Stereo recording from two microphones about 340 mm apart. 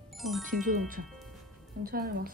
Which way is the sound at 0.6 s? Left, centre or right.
Right.